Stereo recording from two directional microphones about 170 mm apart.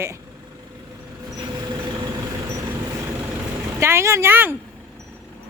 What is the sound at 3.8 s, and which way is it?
Speech, 15° right (ahead or behind).